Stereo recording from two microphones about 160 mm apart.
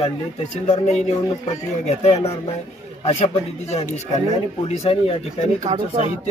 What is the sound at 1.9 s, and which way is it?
Speech, 40° left (ahead or behind).